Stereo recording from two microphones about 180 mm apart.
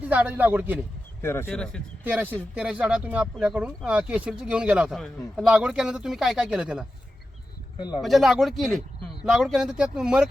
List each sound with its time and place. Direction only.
0.1 s a man's voice: 10° right (ahead or behind)
1.2 s speech: 15° left (ahead or behind)
1.5 s speech: 5° left (ahead or behind)
2.0 s speech: 10° right (ahead or behind)
7.8 s speech: 25° left (ahead or behind)
8.0 s speech: centre (ahead or behind)